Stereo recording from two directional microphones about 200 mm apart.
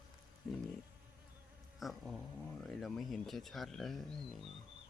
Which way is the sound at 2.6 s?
Centre (ahead or behind).